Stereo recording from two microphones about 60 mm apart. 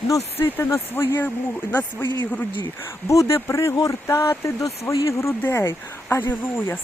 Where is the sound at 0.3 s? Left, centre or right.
Left.